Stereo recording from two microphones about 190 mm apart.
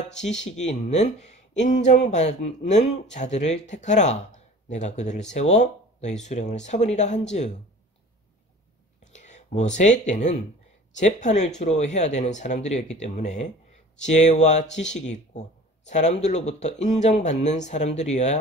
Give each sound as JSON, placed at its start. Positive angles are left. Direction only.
{"t": 0.2, "sound": "speech", "side_deg": 35}
{"t": 9.1, "sound": "speech", "side_deg": 40}